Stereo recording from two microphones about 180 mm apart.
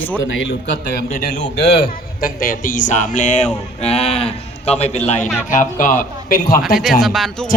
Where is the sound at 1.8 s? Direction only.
50° left (ahead or behind); by 4.7 s 35° left (ahead or behind).